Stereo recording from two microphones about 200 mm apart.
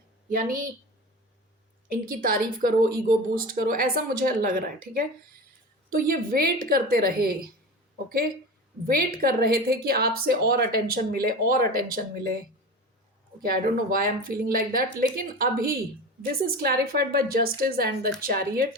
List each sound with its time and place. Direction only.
0.3 s a woman's voice: 45° right (ahead or behind)
1.9 s a woman's voice: 45° right (ahead or behind)
8.9 s a woman's voice: 45° right (ahead or behind)
13.4 s a woman's voice: 45° right (ahead or behind)